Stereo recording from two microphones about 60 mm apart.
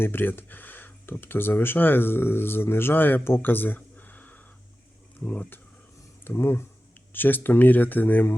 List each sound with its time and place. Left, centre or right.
0.0 s speech: left
3.2 s a sound: left
5.2 s speech: left
6.2 s speech: left